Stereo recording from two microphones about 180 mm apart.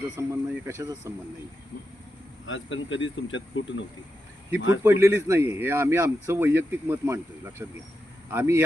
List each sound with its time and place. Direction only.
0.2 s speech: 15° right (ahead or behind)
2.5 s speech: 90° left
4.8 s speech: 15° right (ahead or behind)